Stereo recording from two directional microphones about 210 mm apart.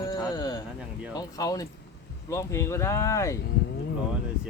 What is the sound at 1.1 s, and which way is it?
Speech, 20° left (ahead or behind).